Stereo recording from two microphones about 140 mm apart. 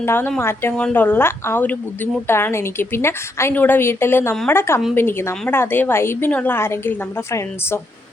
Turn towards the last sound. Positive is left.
turn(degrees=20)  # may be behind; listen again after turning